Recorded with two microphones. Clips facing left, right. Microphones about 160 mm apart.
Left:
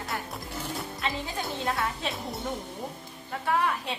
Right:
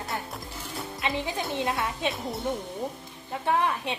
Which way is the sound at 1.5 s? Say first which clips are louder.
Left 1 dB; 20° right (ahead or behind).